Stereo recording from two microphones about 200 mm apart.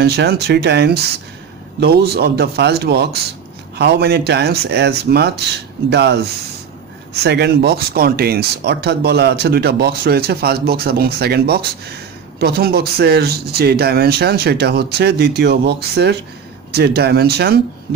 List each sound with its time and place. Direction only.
0.0 s speech: 55° right (ahead or behind)
7.2 s speech: 55° right (ahead or behind)